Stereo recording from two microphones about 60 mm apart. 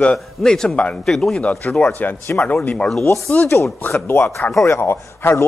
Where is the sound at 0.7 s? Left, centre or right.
Left.